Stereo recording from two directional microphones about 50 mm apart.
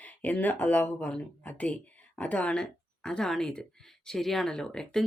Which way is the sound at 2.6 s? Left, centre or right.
Centre.